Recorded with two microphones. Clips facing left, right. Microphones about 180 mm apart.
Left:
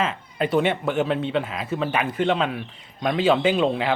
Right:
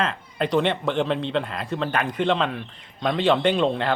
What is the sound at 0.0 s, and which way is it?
Speech, 5° left (ahead or behind).